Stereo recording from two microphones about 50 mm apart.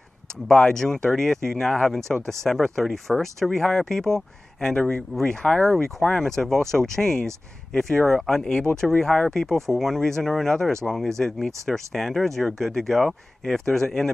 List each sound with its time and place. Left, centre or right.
0.5 s speech: centre
4.7 s speech: left
5.1 s speech: centre